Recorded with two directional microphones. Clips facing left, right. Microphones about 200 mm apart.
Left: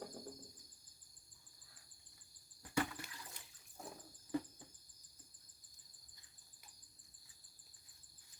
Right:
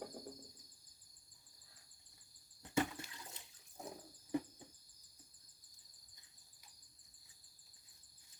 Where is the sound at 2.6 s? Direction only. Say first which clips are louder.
Right 2 dB; 25° right (ahead or behind).